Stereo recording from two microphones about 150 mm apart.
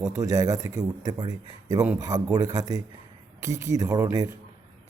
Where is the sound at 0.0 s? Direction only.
20° right (ahead or behind).